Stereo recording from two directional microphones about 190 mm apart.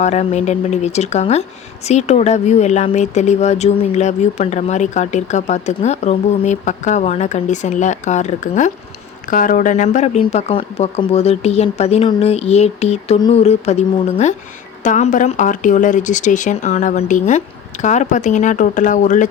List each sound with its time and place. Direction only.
0.0 s speech: 35° left (ahead or behind)